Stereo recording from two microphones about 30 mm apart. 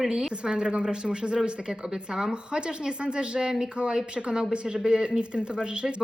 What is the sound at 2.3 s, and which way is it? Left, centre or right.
A woman's voice, right.